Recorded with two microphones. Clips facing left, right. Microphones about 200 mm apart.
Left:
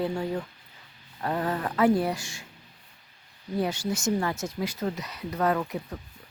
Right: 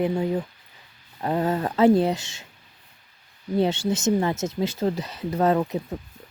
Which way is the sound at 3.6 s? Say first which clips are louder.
Right 6 dB; 25° right (ahead or behind).